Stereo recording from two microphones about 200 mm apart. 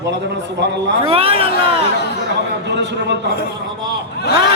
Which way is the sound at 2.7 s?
60° right (ahead or behind).